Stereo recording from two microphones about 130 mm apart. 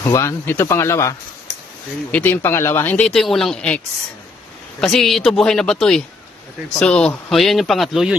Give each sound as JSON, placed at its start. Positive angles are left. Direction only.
{"t": 0.0, "sound": "speech", "side_deg": 25}
{"t": 2.0, "sound": "speech", "side_deg": 10}
{"t": 3.1, "sound": "speech", "side_deg": 0}